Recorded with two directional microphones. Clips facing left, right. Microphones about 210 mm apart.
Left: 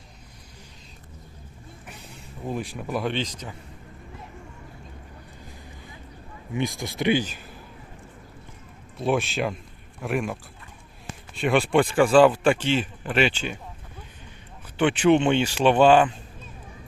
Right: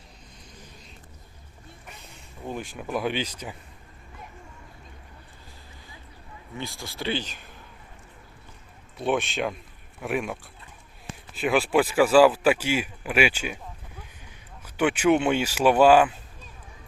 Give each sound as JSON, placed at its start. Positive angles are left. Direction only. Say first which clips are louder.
{"t": 2.5, "sound": "a man's voice", "louder": "left 2 dB", "side_deg": 0}
{"t": 6.5, "sound": "speech", "louder": "left 8 dB", "side_deg": 15}
{"t": 9.0, "sound": "a man's voice", "louder": "left 1 dB", "side_deg": 0}
{"t": 11.3, "sound": "a man's voice", "louder": "left 1 dB", "side_deg": 0}
{"t": 14.8, "sound": "speech", "louder": "left 2 dB", "side_deg": -10}